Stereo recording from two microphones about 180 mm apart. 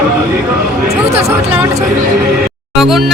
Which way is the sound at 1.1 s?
35° right (ahead or behind).